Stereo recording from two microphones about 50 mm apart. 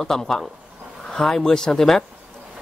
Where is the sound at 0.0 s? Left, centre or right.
Centre.